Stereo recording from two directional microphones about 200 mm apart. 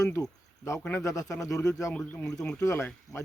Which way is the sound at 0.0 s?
15° left (ahead or behind).